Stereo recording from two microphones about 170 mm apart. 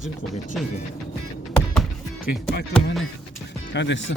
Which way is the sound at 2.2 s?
55° left (ahead or behind).